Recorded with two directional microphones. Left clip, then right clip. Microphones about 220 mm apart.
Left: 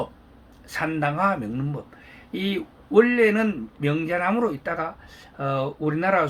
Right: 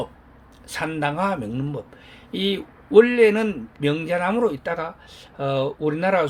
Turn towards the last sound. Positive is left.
turn(degrees=-40)  # may be behind; listen again after turning